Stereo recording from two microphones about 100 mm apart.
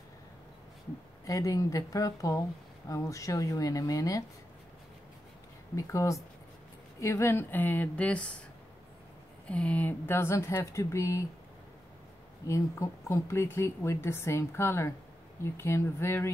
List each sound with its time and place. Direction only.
1.2 s speech: 35° left (ahead or behind)
5.8 s speech: 30° left (ahead or behind); by 8.4 s 10° left (ahead or behind)
9.5 s speech: 15° left (ahead or behind); by 11.2 s 30° left (ahead or behind)
12.4 s speech: 30° left (ahead or behind)